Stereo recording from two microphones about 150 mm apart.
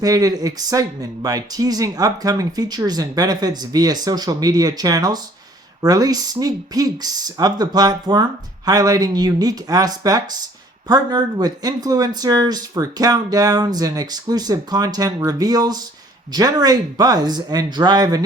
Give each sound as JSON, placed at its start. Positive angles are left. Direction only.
{"t": 0.0, "sound": "speech", "side_deg": -25}